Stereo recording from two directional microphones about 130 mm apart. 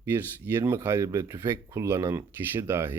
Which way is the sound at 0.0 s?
20° right (ahead or behind).